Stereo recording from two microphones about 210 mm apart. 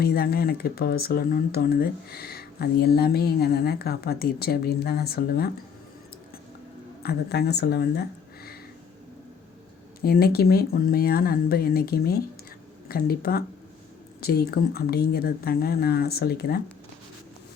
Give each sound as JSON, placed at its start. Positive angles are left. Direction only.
{"t": 0.0, "sound": "speech", "side_deg": 45}
{"t": 7.0, "sound": "speech", "side_deg": 50}
{"t": 10.0, "sound": "speech", "side_deg": 45}